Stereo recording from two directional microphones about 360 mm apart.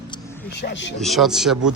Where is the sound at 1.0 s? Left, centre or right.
Centre.